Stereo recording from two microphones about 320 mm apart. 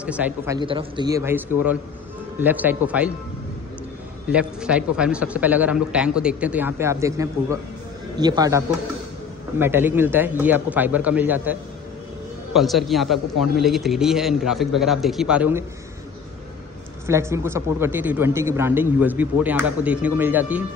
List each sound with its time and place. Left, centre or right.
0.0 s a man's voice: centre
4.3 s a man's voice: centre
12.5 s a man's voice: centre
17.0 s a man's voice: centre